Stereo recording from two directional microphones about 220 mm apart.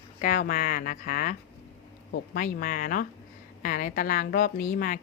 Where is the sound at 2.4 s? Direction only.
40° left (ahead or behind).